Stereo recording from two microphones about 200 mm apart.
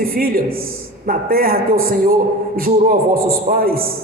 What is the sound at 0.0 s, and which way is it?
A man's voice, 45° right (ahead or behind).